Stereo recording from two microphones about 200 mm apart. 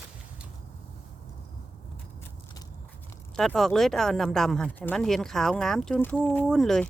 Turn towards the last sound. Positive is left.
turn(degrees=0)  # may be behind; listen again after turning